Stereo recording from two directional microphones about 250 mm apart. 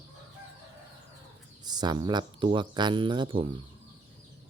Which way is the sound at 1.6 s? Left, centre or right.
Centre.